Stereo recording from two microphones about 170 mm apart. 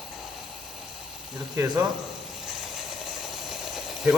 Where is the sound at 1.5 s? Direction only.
20° right (ahead or behind).